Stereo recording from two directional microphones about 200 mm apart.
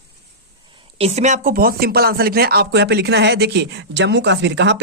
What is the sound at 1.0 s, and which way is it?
Speech, 35° right (ahead or behind).